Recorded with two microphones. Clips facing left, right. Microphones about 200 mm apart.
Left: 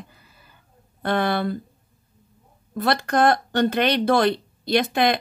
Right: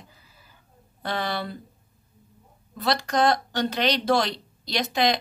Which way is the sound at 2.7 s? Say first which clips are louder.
Left 3 dB; 55° left (ahead or behind).